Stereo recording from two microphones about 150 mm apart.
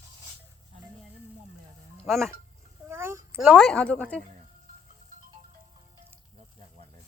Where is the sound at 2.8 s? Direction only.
15° right (ahead or behind).